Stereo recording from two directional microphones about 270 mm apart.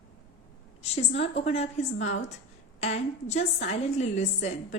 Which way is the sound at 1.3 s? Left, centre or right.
Left.